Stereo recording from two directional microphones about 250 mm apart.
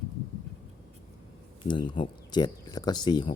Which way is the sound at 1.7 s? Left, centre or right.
Centre.